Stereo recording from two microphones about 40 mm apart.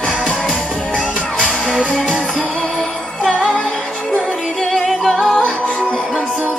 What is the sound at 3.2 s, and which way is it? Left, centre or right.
Music, centre.